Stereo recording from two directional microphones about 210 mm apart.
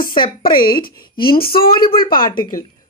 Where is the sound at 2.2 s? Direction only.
20° left (ahead or behind).